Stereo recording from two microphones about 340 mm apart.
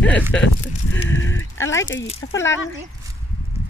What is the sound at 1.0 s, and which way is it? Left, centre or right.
Speech, left.